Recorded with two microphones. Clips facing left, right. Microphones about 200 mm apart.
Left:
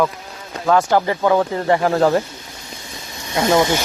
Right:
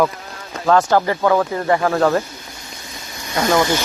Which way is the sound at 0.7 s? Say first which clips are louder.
Right 1 dB; 15° left (ahead or behind).